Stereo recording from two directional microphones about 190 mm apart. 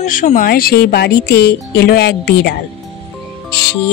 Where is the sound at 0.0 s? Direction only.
45° left (ahead or behind).